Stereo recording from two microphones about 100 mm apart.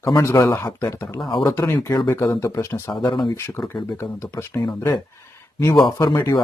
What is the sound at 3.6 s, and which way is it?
Speech, 5° left (ahead or behind).